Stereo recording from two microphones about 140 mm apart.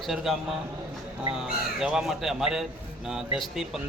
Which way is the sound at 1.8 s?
5° right (ahead or behind).